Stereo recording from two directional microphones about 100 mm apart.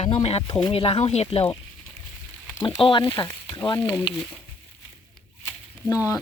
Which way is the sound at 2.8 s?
55° left (ahead or behind).